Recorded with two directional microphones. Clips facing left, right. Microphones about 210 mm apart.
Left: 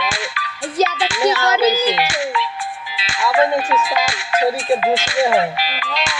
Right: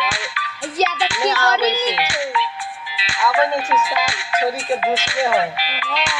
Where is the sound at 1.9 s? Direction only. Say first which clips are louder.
Left 2 dB; 45° left (ahead or behind).